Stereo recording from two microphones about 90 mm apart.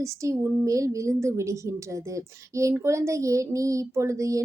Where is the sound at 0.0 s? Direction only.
35° right (ahead or behind).